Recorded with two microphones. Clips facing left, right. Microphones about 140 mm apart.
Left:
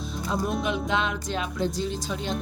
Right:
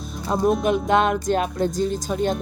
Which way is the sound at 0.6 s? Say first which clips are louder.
Right 7 dB; 50° right (ahead or behind).